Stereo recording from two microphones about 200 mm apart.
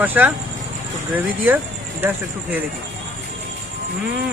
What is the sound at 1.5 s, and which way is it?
Speech, 10° right (ahead or behind).